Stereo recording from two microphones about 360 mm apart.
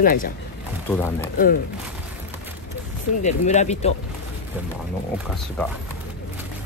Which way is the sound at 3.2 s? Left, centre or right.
Centre.